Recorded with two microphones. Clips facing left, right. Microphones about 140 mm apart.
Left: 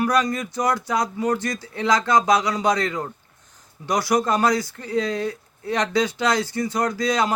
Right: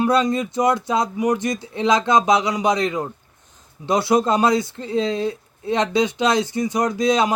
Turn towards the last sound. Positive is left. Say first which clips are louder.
# right 3 dB
turn(degrees=-20)  # may be behind; listen again after turning